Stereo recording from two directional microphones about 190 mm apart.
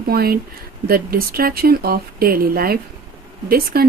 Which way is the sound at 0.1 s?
55° right (ahead or behind).